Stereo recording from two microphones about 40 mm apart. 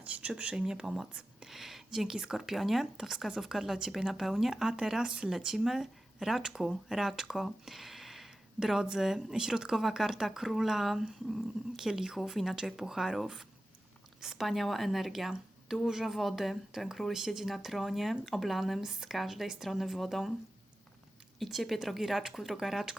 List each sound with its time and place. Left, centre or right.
0.0 s speech: right
0.7 s speech: centre
2.1 s speech: right
2.4 s speech: centre
5.0 s speech: right
5.3 s speech: centre
7.7 s a sound: centre
9.0 s speech: centre
14.3 s speech: centre
21.3 s speech: centre